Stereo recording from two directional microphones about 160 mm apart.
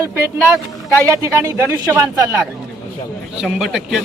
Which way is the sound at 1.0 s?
20° right (ahead or behind).